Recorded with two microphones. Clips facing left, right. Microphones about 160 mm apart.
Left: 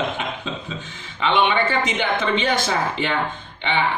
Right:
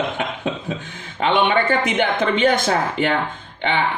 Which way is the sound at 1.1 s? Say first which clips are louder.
Right 2 dB; 50° right (ahead or behind).